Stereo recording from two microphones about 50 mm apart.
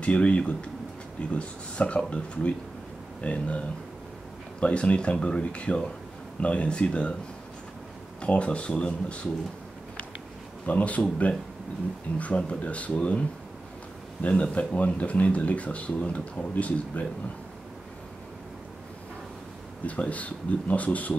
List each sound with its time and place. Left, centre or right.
0.0 s speech: left
8.2 s speech: left
10.7 s speech: left
14.2 s speech: left
19.9 s speech: left